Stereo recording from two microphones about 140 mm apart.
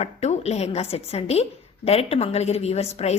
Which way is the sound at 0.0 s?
50° left (ahead or behind).